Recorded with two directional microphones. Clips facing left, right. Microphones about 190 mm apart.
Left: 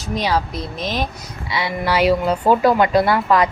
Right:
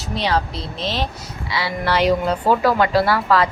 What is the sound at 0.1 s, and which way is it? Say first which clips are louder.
Speech: left 1 dB; 10° left (ahead or behind).